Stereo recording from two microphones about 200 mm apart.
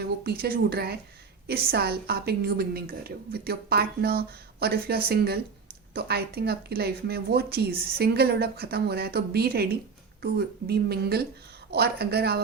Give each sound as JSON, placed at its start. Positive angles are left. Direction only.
{"t": 0.0, "sound": "speech", "side_deg": -50}